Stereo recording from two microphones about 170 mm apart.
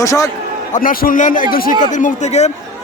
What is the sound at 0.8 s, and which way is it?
A man's voice, 55° left (ahead or behind).